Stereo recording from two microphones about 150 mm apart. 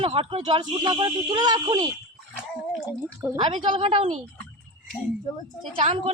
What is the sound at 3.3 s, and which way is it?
Speech, 35° right (ahead or behind).